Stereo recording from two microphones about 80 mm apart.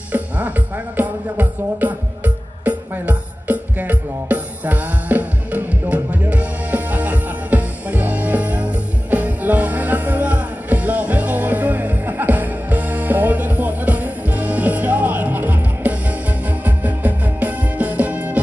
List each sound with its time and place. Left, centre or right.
0.1 s music: right